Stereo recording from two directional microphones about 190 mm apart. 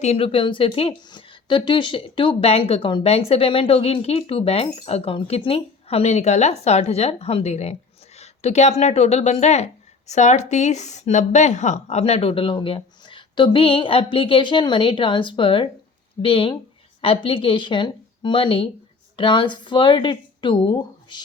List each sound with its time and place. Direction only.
0.0 s speech: 30° left (ahead or behind)